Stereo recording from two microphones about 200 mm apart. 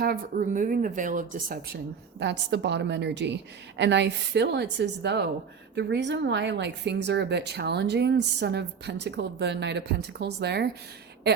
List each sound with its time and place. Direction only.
0.0 s speech: 45° right (ahead or behind)